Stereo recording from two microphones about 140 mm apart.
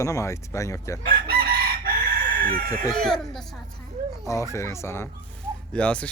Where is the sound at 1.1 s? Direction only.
90° right.